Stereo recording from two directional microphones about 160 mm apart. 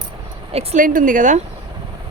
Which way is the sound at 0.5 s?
50° right (ahead or behind).